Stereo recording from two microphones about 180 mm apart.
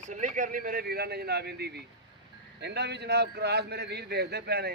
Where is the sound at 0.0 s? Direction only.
45° right (ahead or behind).